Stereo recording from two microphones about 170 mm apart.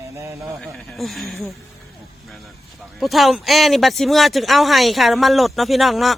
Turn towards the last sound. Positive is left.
turn(degrees=0)  # may be behind; listen again after turning